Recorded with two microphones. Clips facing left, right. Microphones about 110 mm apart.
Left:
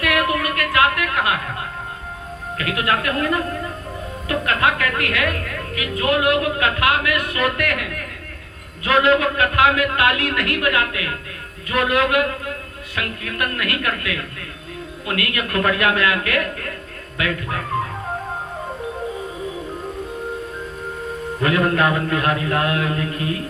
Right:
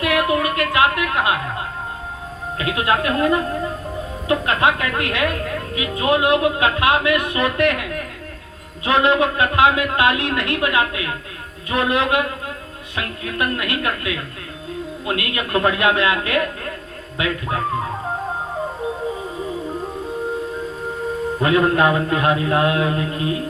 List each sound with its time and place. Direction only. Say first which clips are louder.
0.0 s a woman's voice: right 2 dB; 20° right (ahead or behind)
21.4 s a woman's voice: right 2 dB; 25° right (ahead or behind)